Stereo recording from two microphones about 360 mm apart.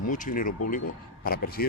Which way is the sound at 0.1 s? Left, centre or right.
Left.